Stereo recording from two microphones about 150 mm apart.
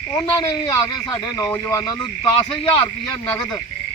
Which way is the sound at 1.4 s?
25° left (ahead or behind).